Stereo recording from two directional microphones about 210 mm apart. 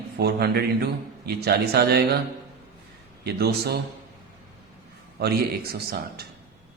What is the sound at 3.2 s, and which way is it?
Speech, 50° right (ahead or behind).